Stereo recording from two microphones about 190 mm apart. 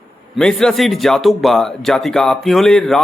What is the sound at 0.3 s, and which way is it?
Speech, 5° left (ahead or behind).